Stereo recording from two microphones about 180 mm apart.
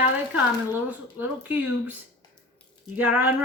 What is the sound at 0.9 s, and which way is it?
Speech, 10° right (ahead or behind).